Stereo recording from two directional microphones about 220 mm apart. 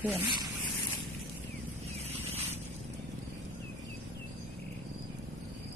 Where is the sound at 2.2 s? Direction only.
30° right (ahead or behind).